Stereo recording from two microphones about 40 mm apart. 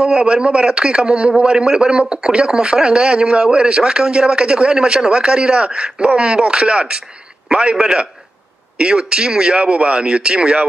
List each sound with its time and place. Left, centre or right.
0.0 s speech: right